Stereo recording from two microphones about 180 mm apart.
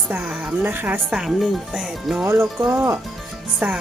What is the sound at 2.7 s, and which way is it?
Speech, 15° right (ahead or behind).